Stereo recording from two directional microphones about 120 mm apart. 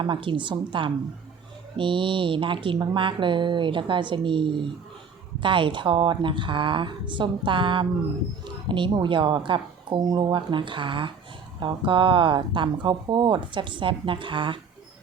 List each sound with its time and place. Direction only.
0.0 s speech: 45° right (ahead or behind)